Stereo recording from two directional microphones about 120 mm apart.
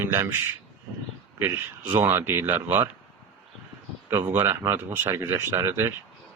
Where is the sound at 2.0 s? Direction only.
20° right (ahead or behind).